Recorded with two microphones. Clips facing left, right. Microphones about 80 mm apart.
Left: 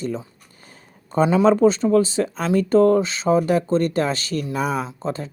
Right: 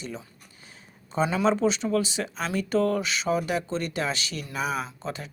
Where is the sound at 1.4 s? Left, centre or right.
Left.